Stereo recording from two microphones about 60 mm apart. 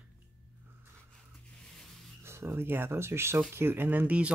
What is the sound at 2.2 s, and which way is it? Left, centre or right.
Speech, right.